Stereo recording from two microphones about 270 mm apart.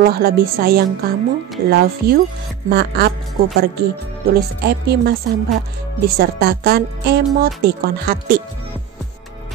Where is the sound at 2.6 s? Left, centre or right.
Right.